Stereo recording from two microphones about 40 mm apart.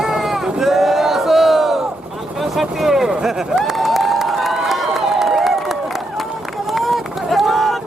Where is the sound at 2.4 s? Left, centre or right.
Centre.